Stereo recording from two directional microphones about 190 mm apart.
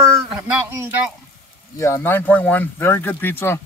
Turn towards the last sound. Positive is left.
turn(degrees=10)  # may be behind; listen again after turning